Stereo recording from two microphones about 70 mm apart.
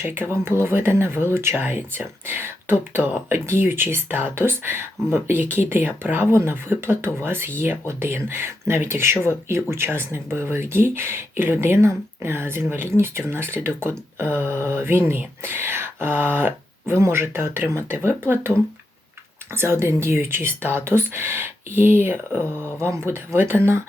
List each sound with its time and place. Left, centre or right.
0.0 s speech: right
19.5 s speech: right